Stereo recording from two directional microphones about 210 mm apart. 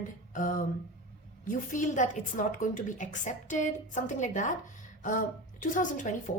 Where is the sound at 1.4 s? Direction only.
40° left (ahead or behind).